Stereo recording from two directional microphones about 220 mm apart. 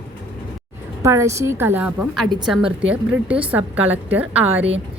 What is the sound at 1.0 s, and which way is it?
A woman's voice, 15° right (ahead or behind).